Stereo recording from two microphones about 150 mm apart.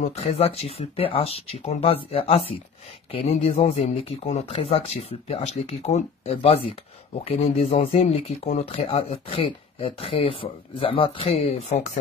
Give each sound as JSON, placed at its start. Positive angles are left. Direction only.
{"t": 0.0, "sound": "speech", "side_deg": 45}